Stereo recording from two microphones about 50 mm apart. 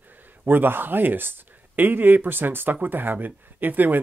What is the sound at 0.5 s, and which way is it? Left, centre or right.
Speech, right.